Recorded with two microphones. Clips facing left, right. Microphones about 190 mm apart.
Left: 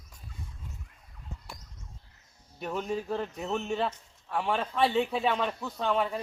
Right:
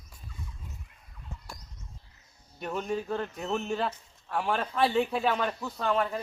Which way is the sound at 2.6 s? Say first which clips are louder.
Even; centre (ahead or behind).